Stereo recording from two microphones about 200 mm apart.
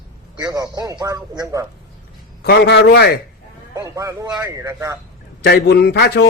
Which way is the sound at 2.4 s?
55° left (ahead or behind).